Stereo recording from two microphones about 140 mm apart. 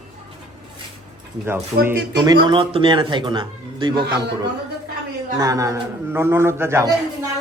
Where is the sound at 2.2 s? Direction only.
35° right (ahead or behind).